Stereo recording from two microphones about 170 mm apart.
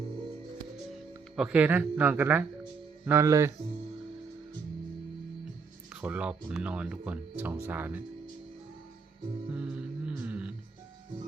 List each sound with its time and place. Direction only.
1.4 s speech: 5° right (ahead or behind)
5.9 s speech: 5° right (ahead or behind)
9.6 s a sound: 5° right (ahead or behind)